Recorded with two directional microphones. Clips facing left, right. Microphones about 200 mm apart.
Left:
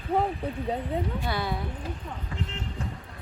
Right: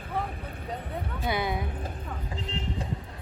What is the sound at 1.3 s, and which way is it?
Speech, 15° right (ahead or behind).